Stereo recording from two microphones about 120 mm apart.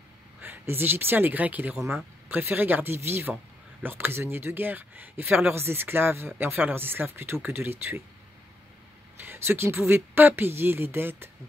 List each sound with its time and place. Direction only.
0.4 s speech: 15° right (ahead or behind)
9.2 s speech: 15° right (ahead or behind)